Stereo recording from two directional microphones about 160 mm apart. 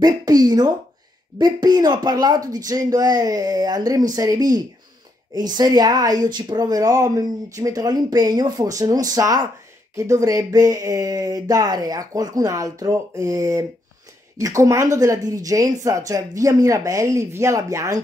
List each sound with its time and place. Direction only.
0.0 s speech: 25° right (ahead or behind)